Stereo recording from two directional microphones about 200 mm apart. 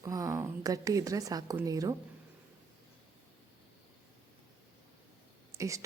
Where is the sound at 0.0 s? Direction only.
15° right (ahead or behind).